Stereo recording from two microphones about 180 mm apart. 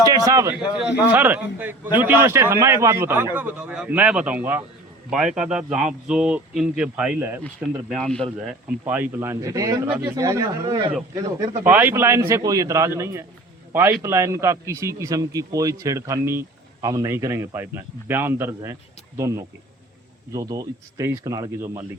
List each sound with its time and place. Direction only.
0.3 s a man's voice: 15° right (ahead or behind)
7.9 s speech: 5° left (ahead or behind)
8.8 s a man's voice: 10° right (ahead or behind)